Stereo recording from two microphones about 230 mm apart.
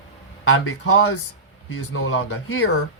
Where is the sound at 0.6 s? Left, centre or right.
Left.